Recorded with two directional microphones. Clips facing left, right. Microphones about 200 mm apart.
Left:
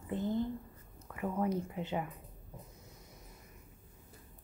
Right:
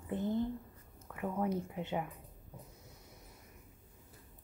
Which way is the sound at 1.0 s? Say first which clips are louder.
Left 1 dB; centre (ahead or behind).